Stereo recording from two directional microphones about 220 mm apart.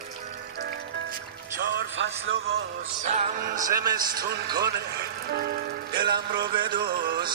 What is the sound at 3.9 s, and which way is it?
Music, 40° right (ahead or behind).